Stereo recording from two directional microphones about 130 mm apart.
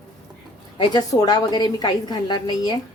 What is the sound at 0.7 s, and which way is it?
A woman's voice, 30° left (ahead or behind).